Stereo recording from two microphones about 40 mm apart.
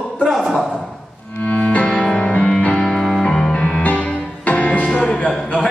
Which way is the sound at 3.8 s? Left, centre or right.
Left.